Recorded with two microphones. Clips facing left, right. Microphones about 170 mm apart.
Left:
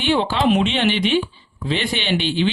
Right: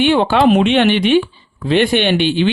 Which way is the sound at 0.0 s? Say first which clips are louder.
Right 6 dB; 60° right (ahead or behind).